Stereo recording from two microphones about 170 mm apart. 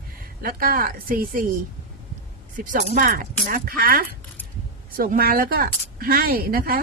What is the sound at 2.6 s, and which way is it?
A woman's voice, 50° right (ahead or behind).